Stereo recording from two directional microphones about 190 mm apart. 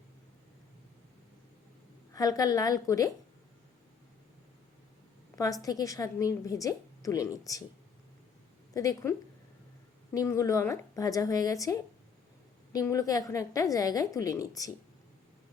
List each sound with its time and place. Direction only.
2.1 s a woman's voice: 20° left (ahead or behind)
5.6 s a woman's voice: 20° left (ahead or behind)
8.7 s a woman's voice: 20° left (ahead or behind)